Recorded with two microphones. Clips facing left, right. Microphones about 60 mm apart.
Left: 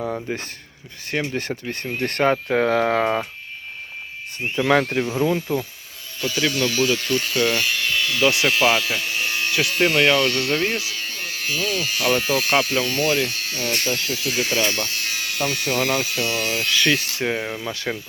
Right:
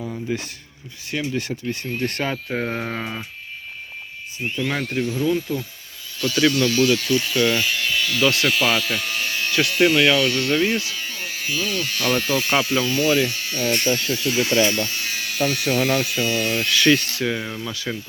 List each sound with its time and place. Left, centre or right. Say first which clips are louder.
0.0 s a sound: left 4 dB; left
0.3 s speech: right 2 dB; left
4.5 s speech: left 6 dB; left
6.2 s speech: right 3 dB; centre
8.3 s speech: left 1 dB; centre
8.5 s speech: left 2 dB; centre
9.0 s a sound: left 1 dB; centre
10.2 s speech: right 1 dB; centre
17.2 s speech: left 1 dB; left
17.7 s speech: left 2 dB; left